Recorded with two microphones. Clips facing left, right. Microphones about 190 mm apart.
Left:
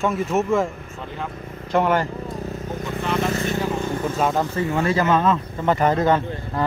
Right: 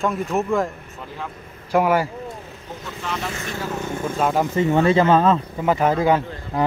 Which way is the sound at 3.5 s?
15° left (ahead or behind).